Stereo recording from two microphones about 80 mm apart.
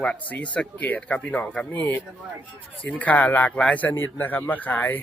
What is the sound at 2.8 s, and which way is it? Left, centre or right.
Speech, centre.